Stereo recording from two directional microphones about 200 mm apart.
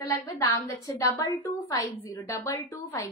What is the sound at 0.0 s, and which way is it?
A woman's voice, 20° left (ahead or behind).